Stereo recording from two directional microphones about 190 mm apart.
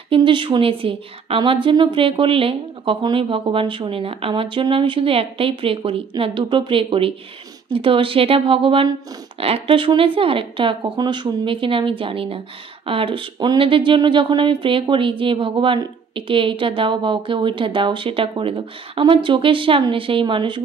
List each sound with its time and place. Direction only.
0.1 s speech: 25° right (ahead or behind)